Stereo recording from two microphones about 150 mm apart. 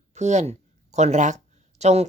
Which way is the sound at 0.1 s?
50° right (ahead or behind).